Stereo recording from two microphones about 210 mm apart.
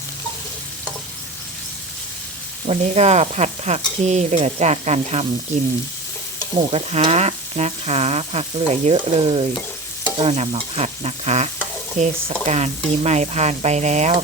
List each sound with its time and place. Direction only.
2.6 s speech: 30° right (ahead or behind)
6.6 s speech: 30° right (ahead or behind)
10.2 s stir: 30° right (ahead or behind)
11.9 s speech: 30° right (ahead or behind)